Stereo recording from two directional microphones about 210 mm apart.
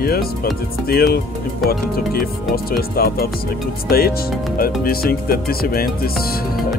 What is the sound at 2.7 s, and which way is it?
Speech, 45° left (ahead or behind).